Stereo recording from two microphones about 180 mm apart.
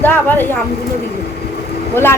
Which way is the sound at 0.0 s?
10° left (ahead or behind).